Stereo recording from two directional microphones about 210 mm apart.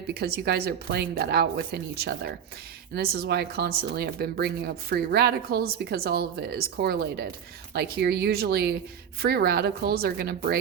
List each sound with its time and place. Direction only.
0.1 s speech: 50° right (ahead or behind)